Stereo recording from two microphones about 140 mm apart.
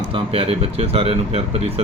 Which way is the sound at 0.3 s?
45° right (ahead or behind).